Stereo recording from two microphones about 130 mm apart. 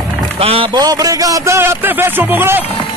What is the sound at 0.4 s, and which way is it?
Speech, 45° right (ahead or behind).